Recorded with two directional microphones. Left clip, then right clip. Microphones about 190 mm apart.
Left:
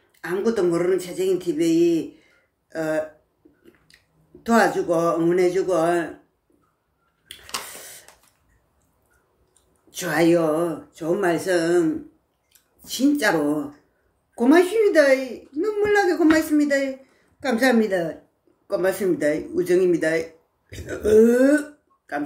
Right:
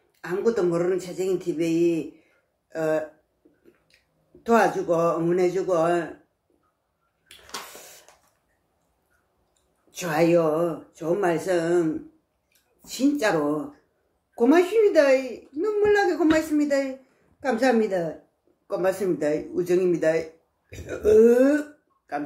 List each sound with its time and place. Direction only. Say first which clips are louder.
0.5 s a woman's voice: left 2 dB; 20° left (ahead or behind)
4.4 s a woman's voice: left 1 dB; 20° left (ahead or behind)
9.8 s a woman's voice: left 2 dB; 15° left (ahead or behind)
12.8 s speech: left 3 dB; 15° left (ahead or behind)
14.3 s a woman's voice: left 2 dB; 20° left (ahead or behind)